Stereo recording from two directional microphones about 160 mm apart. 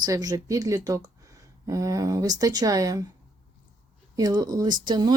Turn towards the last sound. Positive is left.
turn(degrees=-25)  # may be behind; listen again after turning